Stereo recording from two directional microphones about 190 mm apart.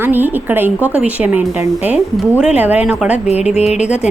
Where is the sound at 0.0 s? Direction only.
10° right (ahead or behind).